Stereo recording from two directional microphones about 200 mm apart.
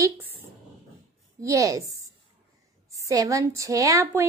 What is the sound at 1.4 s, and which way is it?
Speech, 15° right (ahead or behind).